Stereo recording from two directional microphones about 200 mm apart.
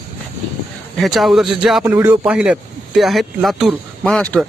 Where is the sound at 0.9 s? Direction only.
Centre (ahead or behind).